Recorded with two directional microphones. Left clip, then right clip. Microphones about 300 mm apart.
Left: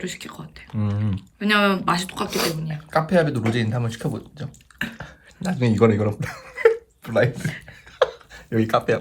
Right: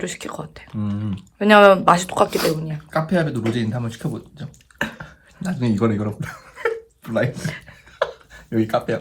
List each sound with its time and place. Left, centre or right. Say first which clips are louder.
0.0 s speech: right 4 dB; centre
0.8 s speech: even; left
1.4 s speech: right 9 dB; centre
2.9 s speech: left 2 dB; left
4.9 s chuckle: even; left
7.3 s speech: right 1 dB; centre
7.9 s a sound: left 3 dB; left